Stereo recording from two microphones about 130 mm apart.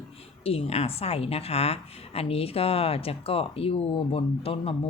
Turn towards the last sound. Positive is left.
turn(degrees=45)  # may be behind; listen again after turning